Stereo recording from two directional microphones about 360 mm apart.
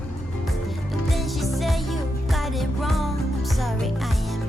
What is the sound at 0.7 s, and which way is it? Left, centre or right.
Music, centre.